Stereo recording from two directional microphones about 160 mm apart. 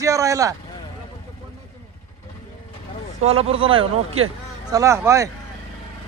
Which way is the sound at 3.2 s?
40° right (ahead or behind).